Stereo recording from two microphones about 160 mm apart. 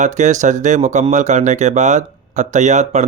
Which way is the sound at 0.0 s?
50° right (ahead or behind).